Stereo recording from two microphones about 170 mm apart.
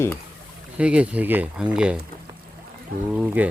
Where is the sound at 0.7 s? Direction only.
5° right (ahead or behind).